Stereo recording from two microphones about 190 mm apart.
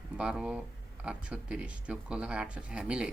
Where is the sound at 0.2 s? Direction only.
5° right (ahead or behind).